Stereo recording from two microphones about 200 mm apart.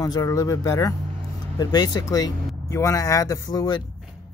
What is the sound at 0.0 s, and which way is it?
Speech, 20° left (ahead or behind).